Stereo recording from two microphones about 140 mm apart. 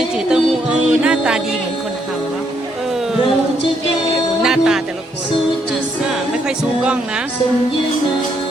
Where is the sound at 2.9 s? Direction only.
5° right (ahead or behind).